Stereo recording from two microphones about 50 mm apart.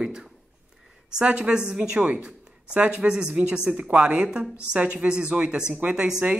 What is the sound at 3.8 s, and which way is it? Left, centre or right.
A woman's voice, right.